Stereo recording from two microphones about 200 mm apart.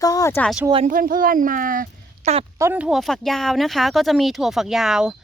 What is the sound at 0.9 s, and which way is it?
A woman's voice, 45° right (ahead or behind).